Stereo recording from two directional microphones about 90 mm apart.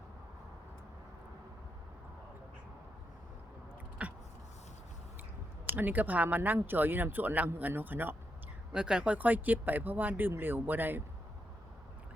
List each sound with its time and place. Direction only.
4.0 s a sound: 15° right (ahead or behind)
5.6 s speech: 20° right (ahead or behind)
8.7 s speech: 10° right (ahead or behind)